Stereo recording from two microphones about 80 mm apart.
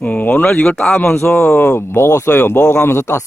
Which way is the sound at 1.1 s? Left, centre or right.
Left.